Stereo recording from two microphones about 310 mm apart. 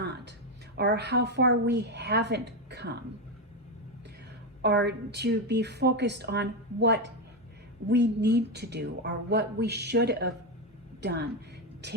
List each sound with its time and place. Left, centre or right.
0.0 s a sound: right
0.8 s speech: right
4.6 s speech: right